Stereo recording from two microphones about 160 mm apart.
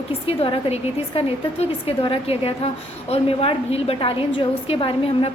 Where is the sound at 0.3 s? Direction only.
35° left (ahead or behind).